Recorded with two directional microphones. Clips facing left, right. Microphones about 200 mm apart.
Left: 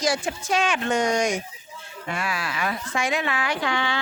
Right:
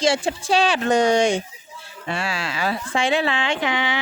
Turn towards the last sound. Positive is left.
turn(degrees=-20)  # may be behind; listen again after turning